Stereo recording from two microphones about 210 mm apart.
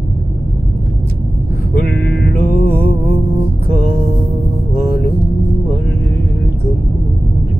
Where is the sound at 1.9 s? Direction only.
Centre (ahead or behind).